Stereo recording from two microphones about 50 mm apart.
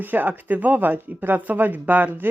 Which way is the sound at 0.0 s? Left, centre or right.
Right.